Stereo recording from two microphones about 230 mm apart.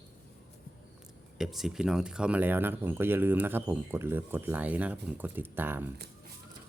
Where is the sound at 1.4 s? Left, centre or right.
Centre.